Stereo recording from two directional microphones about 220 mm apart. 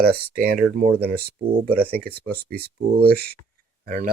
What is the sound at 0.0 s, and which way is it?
Speech, 45° right (ahead or behind).